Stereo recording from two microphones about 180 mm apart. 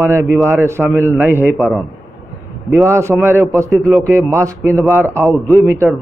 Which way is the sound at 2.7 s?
15° right (ahead or behind).